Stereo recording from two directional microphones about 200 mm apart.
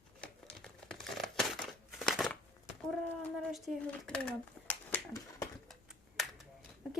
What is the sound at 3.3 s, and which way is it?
Speech, centre (ahead or behind).